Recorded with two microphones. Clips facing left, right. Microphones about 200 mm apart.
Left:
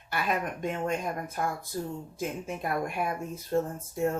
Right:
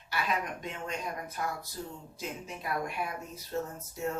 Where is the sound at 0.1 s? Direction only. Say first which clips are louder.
Left 3 dB; 50° left (ahead or behind).